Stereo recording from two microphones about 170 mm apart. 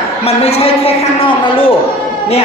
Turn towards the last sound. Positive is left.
turn(degrees=35)  # may be behind; listen again after turning